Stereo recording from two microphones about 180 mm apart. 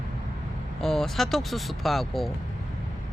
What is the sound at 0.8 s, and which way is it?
Speech, centre (ahead or behind).